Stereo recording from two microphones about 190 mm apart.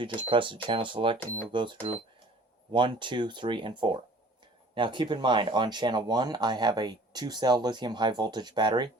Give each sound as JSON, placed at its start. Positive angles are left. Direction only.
{"t": 0.0, "sound": "speech", "side_deg": -25}
{"t": 1.2, "sound": "speech", "side_deg": 10}
{"t": 1.5, "sound": "speech", "side_deg": -25}